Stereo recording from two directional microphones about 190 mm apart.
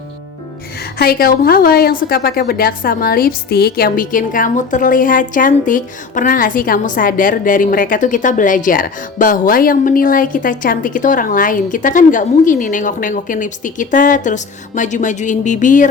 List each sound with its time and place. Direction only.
0.9 s a woman's voice: 50° left (ahead or behind)